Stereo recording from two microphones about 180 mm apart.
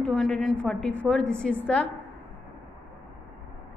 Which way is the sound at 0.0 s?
Centre (ahead or behind).